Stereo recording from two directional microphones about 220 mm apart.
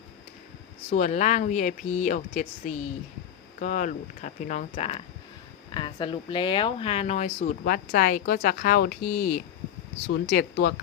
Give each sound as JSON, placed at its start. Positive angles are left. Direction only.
{"t": 0.9, "sound": "speech", "side_deg": 35}